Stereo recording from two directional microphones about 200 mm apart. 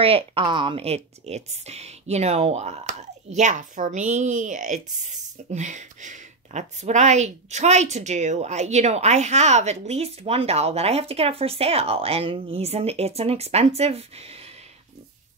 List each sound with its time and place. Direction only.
0.0 s a woman's voice: 30° right (ahead or behind)